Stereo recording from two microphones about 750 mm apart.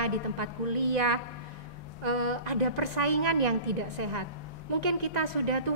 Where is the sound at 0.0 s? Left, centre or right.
Right.